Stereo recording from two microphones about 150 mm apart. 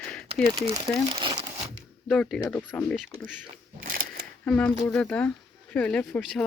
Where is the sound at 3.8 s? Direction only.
70° right (ahead or behind).